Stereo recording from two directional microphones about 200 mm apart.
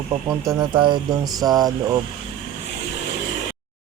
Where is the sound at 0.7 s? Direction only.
25° right (ahead or behind).